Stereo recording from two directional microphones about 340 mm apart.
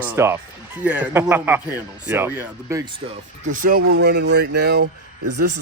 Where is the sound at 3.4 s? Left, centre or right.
Right.